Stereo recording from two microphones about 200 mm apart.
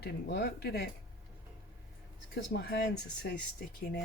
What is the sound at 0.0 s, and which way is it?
Speech, 50° left (ahead or behind).